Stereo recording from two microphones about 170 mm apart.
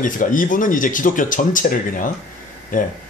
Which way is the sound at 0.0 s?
50° left (ahead or behind).